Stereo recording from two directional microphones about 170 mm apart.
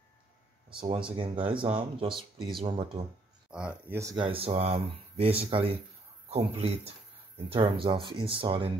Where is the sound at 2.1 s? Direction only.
Centre (ahead or behind).